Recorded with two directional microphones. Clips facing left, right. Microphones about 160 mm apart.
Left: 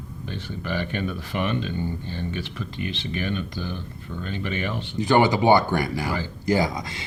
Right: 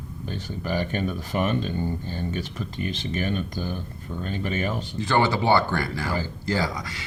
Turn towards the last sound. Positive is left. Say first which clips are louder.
# left 4 dB
turn(degrees=20)  # may be behind; listen again after turning